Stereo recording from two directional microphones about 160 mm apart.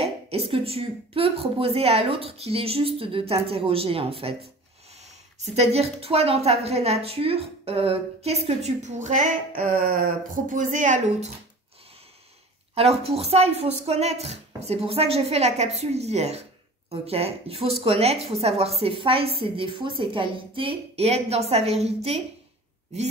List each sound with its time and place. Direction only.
0.0 s a woman's voice: 40° right (ahead or behind)
12.7 s a woman's voice: 40° right (ahead or behind)